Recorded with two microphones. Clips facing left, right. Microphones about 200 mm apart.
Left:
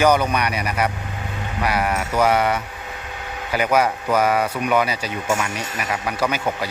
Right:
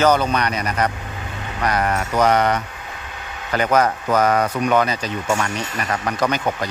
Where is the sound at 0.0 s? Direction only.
10° left (ahead or behind).